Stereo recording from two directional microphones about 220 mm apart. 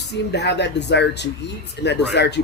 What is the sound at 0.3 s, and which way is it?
Speech, 50° left (ahead or behind).